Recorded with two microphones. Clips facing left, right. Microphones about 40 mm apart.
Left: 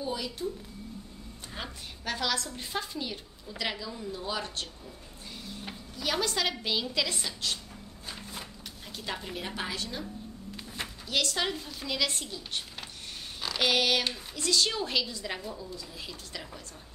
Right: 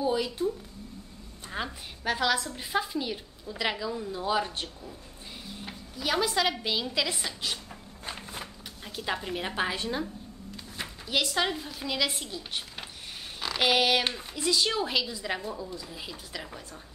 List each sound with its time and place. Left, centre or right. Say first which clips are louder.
1.6 s a woman's voice: right 5 dB; centre
5.6 s speech: right 2 dB; centre
8.1 s a sound: right 3 dB; right
8.9 s a woman's voice: right 5 dB; centre
10.8 s a woman's voice: right 1 dB; centre
13.4 s a sound: right 2 dB; centre
14.3 s a woman's voice: right 1 dB; centre